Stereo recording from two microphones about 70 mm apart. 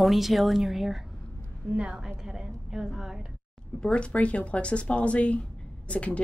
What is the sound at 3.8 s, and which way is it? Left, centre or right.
Speech, centre.